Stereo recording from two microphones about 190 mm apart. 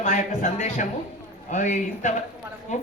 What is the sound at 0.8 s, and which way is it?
A man's voice, 40° left (ahead or behind).